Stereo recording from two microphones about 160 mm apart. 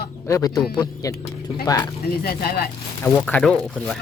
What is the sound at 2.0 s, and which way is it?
Speech, 75° left (ahead or behind).